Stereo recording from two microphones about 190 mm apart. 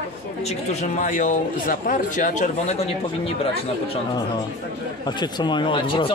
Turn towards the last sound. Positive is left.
turn(degrees=25)  # may be behind; listen again after turning